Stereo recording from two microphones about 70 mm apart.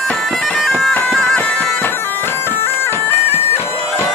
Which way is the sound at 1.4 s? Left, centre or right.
Left.